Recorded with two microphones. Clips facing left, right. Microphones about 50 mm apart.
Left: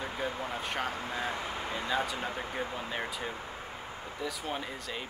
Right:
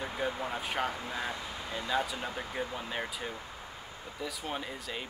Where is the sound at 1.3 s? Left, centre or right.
Left.